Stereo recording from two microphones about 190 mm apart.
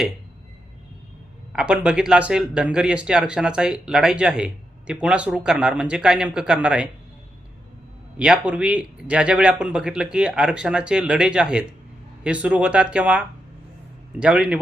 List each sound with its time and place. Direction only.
1.5 s speech: 5° right (ahead or behind)
8.2 s speech: 5° right (ahead or behind)